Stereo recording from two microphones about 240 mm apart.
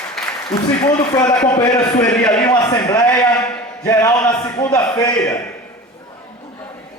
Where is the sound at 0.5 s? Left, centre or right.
Centre.